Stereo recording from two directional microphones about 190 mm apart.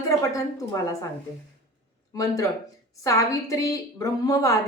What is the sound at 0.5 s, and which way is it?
Speech, 15° left (ahead or behind).